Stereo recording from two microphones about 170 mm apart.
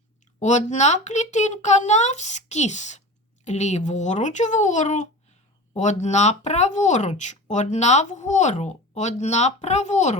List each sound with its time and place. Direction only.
0.3 s speech: 45° left (ahead or behind)